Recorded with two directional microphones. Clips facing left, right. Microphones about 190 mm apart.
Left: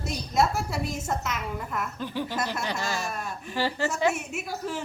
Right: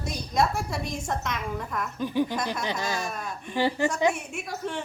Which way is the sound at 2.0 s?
15° right (ahead or behind).